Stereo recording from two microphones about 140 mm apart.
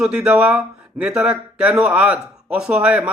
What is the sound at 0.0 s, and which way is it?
Speech, 5° right (ahead or behind).